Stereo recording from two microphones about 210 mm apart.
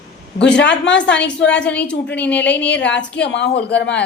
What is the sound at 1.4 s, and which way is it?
A woman's voice, 5° left (ahead or behind).